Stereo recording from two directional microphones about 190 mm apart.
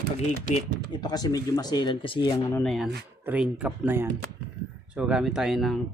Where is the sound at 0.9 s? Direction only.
20° left (ahead or behind).